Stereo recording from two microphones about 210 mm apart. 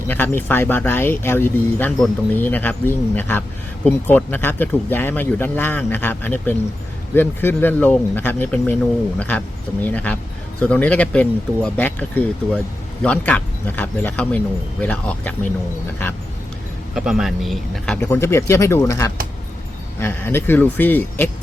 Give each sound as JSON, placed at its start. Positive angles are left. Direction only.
{"t": 0.1, "sound": "speech", "side_deg": 10}
{"t": 16.9, "sound": "speech", "side_deg": 0}